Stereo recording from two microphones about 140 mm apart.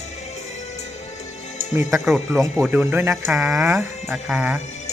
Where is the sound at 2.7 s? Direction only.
15° right (ahead or behind).